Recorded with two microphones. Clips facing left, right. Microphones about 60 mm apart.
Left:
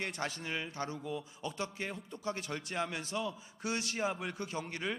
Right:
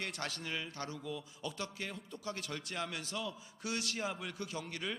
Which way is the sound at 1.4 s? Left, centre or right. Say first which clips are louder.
Left 3 dB; left.